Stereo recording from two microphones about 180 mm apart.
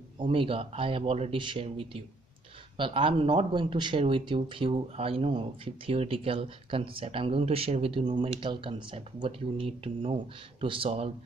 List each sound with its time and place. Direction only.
0.2 s a man's voice: 30° right (ahead or behind)